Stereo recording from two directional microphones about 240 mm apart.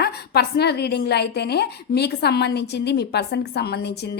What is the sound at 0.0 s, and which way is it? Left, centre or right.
A woman's voice, left.